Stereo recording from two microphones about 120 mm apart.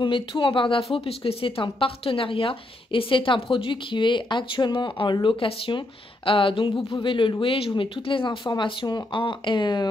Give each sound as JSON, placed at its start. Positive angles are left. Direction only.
{"t": 0.0, "sound": "a woman's voice", "side_deg": 45}